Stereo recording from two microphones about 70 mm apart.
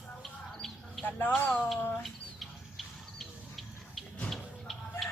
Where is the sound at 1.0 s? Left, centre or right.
Left.